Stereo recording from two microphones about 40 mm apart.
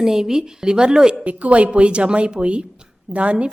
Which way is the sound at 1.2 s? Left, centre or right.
Right.